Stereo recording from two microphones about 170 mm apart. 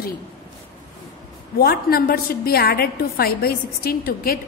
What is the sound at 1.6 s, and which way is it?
A woman's voice, 65° left (ahead or behind).